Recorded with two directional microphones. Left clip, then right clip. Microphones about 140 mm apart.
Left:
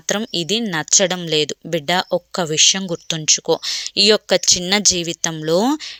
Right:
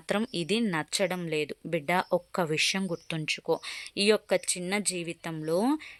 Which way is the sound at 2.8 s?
25° left (ahead or behind).